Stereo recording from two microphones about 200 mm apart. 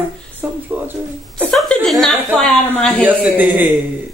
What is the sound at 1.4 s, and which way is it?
Speech, 5° left (ahead or behind).